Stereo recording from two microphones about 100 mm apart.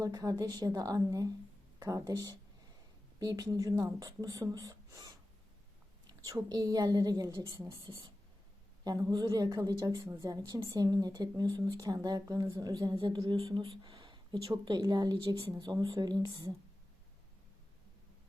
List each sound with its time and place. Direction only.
0.0 s a woman's voice: 35° right (ahead or behind)
6.2 s a woman's voice: 40° right (ahead or behind)
8.8 s a woman's voice: 40° right (ahead or behind)
13.5 s speech: 60° right (ahead or behind)
13.9 s a sound: 55° right (ahead or behind)
14.4 s a woman's voice: 45° right (ahead or behind)